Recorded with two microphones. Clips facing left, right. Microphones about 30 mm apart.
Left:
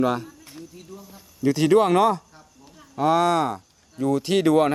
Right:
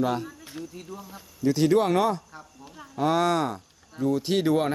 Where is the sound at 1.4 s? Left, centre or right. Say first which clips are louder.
Left 3 dB; centre.